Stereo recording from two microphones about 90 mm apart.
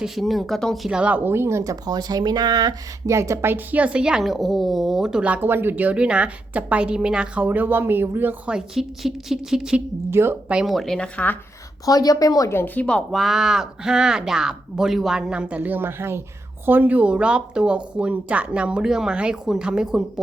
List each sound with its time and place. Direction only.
0.0 s speech: centre (ahead or behind)
0.9 s speech: 10° right (ahead or behind); by 1.7 s 30° right (ahead or behind)
1.7 s speech: 50° right (ahead or behind)
3.1 s a woman's voice: 35° right (ahead or behind)
8.4 s a woman's voice: 5° right (ahead or behind)
10.1 s speech: 25° right (ahead or behind)
10.5 s speech: 5° right (ahead or behind); by 11.3 s 15° left (ahead or behind)
11.9 s a woman's voice: 45° left (ahead or behind)
12.5 s speech: 25° left (ahead or behind)
13.1 s a woman's voice: centre (ahead or behind)